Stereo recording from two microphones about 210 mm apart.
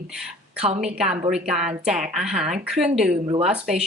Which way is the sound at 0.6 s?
30° right (ahead or behind).